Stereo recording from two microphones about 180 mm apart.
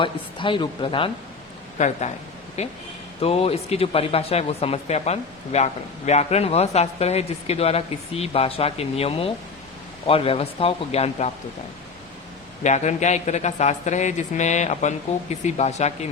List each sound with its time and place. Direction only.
0.0 s a woman's voice: 30° left (ahead or behind)
1.8 s speech: 40° left (ahead or behind)
12.6 s speech: 40° left (ahead or behind)